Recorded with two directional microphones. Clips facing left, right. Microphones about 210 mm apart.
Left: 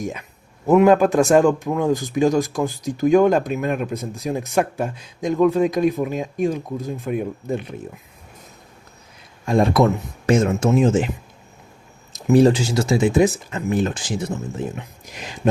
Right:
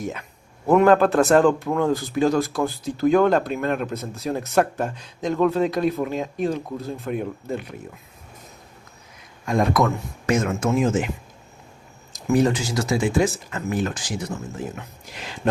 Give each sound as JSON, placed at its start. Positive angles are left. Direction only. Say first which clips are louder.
{"t": 0.0, "sound": "a man's voice", "louder": "left 2 dB", "side_deg": 15}
{"t": 9.5, "sound": "speech", "louder": "left 4 dB", "side_deg": 30}
{"t": 12.1, "sound": "speech", "louder": "left 5 dB", "side_deg": 30}
{"t": 14.8, "sound": "speech", "louder": "left 2 dB", "side_deg": 15}